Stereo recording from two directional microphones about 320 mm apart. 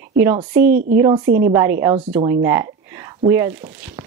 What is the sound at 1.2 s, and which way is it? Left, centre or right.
Speech, right.